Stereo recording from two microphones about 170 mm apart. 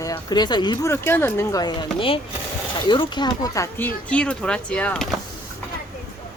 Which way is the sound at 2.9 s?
25° left (ahead or behind).